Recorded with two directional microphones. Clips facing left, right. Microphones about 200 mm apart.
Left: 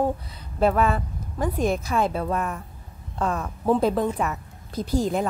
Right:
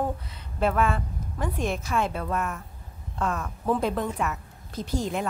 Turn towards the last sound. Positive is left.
turn(degrees=35)  # may be behind; listen again after turning